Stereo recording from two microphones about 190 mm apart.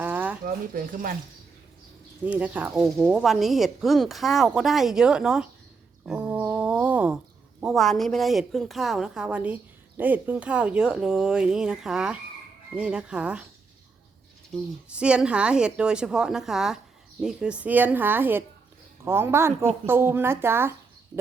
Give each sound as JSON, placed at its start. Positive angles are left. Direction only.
{"t": 0.0, "sound": "a sound", "side_deg": -10}
{"t": 0.4, "sound": "speech", "side_deg": -45}
{"t": 2.2, "sound": "speech", "side_deg": -5}
{"t": 6.1, "sound": "a sound", "side_deg": -5}
{"t": 7.6, "sound": "speech", "side_deg": 0}
{"t": 14.5, "sound": "speech", "side_deg": -5}